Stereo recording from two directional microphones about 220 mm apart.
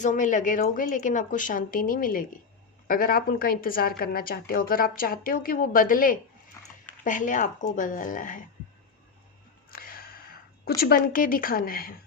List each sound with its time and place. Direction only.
0.0 s a woman's voice: 35° left (ahead or behind)
9.6 s music: 40° left (ahead or behind)
10.8 s a woman's voice: 45° left (ahead or behind)